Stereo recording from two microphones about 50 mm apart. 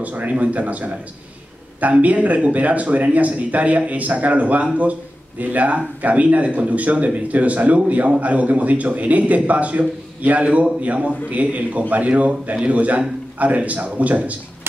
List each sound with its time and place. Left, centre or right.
0.0 s a man's voice: right